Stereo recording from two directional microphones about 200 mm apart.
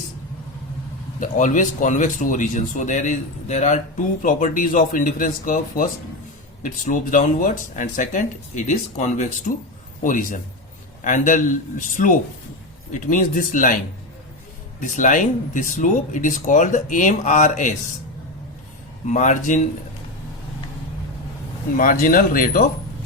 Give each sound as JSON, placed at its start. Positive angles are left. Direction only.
{"t": 1.2, "sound": "speech", "side_deg": 40}
{"t": 14.8, "sound": "speech", "side_deg": 40}
{"t": 19.0, "sound": "speech", "side_deg": 35}
{"t": 21.8, "sound": "speech", "side_deg": 45}